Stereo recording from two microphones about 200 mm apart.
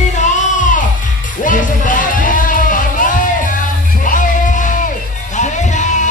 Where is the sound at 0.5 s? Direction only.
40° left (ahead or behind).